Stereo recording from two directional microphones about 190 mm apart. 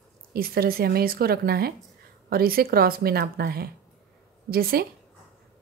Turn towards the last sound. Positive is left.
turn(degrees=-50)  # may be behind; listen again after turning